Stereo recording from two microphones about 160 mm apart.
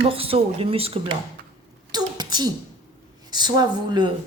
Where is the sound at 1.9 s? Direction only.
25° right (ahead or behind).